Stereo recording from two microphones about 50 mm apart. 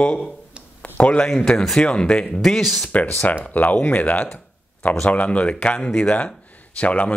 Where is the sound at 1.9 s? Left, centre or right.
Centre.